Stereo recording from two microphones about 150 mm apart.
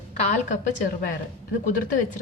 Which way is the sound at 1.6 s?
60° left (ahead or behind).